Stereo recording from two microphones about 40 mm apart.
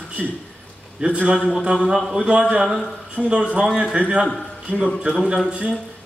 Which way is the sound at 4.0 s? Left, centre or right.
Right.